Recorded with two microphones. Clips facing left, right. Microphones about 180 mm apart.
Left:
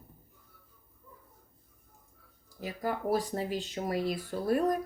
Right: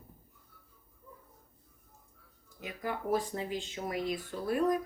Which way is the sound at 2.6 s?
35° left (ahead or behind).